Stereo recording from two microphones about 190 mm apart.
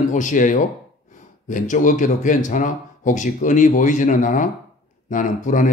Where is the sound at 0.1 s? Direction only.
40° left (ahead or behind).